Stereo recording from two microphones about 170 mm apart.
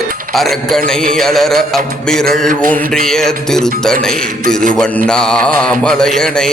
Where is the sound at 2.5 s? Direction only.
50° right (ahead or behind).